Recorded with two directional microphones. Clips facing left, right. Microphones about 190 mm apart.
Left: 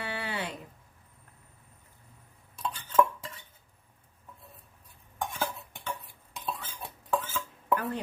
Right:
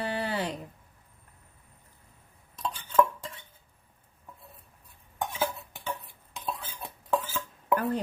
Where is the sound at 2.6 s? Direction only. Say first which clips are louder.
Right 1 dB; 5° left (ahead or behind).